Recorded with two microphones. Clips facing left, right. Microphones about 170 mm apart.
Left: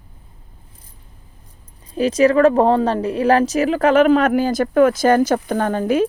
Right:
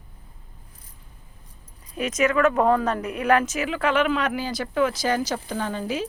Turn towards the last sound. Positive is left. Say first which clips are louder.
# left 9 dB
turn(degrees=55)  # may be behind; listen again after turning